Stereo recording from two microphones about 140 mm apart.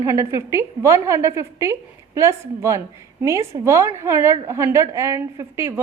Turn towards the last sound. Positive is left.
turn(degrees=-20)  # may be behind; listen again after turning